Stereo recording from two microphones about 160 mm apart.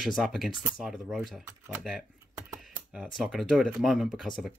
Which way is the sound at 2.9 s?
5° right (ahead or behind).